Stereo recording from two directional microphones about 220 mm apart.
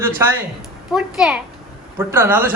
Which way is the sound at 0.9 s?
5° right (ahead or behind).